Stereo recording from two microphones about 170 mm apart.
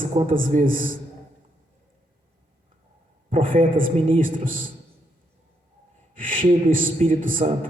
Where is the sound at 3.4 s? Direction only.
55° right (ahead or behind).